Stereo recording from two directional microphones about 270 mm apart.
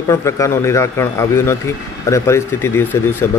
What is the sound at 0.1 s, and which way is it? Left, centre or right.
Speech, centre.